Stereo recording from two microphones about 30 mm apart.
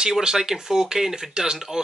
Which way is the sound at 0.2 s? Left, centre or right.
Right.